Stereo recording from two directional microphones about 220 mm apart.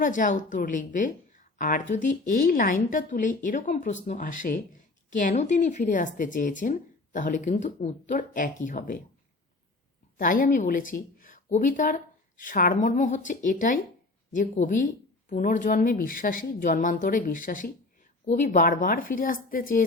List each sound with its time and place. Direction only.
0.0 s speech: 35° left (ahead or behind)
10.2 s a woman's voice: 40° left (ahead or behind)